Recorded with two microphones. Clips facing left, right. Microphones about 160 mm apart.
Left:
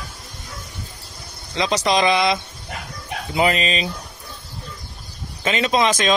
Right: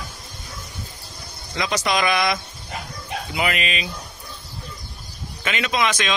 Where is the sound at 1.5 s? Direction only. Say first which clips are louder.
Left 4 dB; 30° left (ahead or behind).